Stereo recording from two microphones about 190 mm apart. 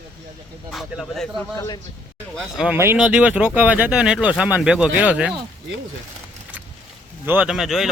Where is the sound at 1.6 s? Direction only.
20° left (ahead or behind).